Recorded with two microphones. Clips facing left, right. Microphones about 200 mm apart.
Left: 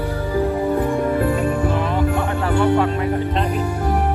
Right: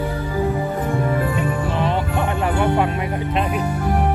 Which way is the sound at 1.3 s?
45° left (ahead or behind).